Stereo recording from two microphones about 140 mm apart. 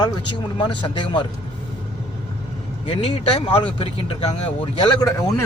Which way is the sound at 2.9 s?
45° left (ahead or behind).